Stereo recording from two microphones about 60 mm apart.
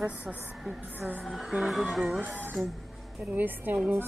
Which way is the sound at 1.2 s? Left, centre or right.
Centre.